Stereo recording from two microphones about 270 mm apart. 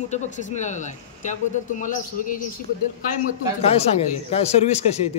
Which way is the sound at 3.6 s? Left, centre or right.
Left.